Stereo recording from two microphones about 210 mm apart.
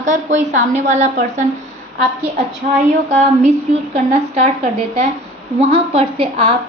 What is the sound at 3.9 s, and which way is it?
A woman's voice, 35° right (ahead or behind).